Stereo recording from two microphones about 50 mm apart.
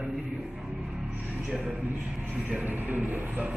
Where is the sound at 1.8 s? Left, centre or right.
Right.